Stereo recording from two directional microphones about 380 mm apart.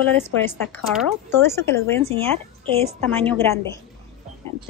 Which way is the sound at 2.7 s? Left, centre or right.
Centre.